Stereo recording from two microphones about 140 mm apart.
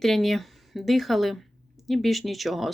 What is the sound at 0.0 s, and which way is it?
Speech, centre (ahead or behind).